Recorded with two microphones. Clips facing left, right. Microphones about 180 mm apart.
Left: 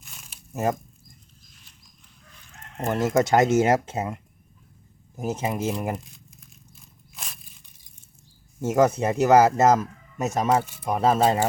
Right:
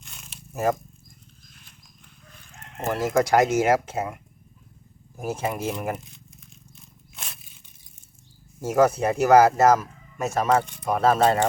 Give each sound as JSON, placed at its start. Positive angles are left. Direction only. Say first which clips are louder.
{"t": 0.0, "sound": "crumpling", "louder": "right 2 dB", "side_deg": 0}
{"t": 2.8, "sound": "speech", "louder": "left 1 dB", "side_deg": 25}
{"t": 6.0, "sound": "speech", "louder": "even", "side_deg": 0}
{"t": 6.7, "sound": "scrape", "louder": "even", "side_deg": 0}
{"t": 8.6, "sound": "speech", "louder": "even", "side_deg": 20}
{"t": 10.6, "sound": "speech", "louder": "right 2 dB", "side_deg": 5}
{"t": 10.8, "sound": "speech", "louder": "right 1 dB", "side_deg": 15}
{"t": 11.2, "sound": "speech", "louder": "right 1 dB", "side_deg": 5}